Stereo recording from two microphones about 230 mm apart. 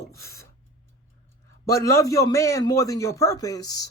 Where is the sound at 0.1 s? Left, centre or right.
Centre.